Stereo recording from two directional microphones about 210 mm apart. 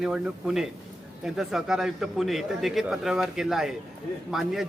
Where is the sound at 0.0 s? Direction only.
Centre (ahead or behind).